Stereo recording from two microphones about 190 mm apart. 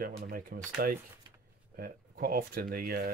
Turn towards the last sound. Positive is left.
turn(degrees=-50)  # may be behind; listen again after turning